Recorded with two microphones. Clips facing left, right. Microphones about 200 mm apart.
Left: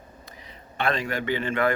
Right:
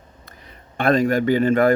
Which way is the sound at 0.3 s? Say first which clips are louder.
Even; 50° right (ahead or behind).